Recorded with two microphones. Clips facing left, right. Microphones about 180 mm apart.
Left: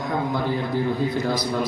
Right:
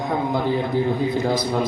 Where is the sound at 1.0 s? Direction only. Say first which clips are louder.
Right 2 dB; 50° right (ahead or behind).